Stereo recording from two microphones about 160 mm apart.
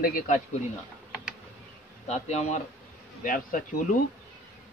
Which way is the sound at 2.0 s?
45° left (ahead or behind).